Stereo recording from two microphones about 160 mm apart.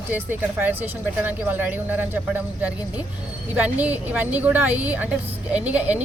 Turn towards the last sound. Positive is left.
turn(degrees=-10)  # may be behind; listen again after turning